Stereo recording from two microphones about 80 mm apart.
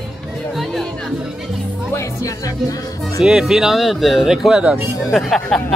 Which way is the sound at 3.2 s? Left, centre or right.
Centre.